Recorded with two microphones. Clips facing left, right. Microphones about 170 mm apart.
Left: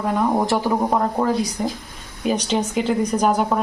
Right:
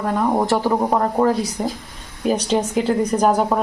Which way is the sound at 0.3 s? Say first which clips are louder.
Right 1 dB; centre (ahead or behind).